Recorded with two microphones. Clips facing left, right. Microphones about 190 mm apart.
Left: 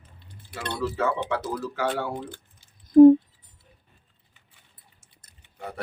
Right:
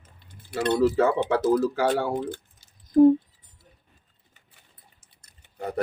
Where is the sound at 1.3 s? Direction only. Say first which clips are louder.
Right 8 dB; 40° right (ahead or behind).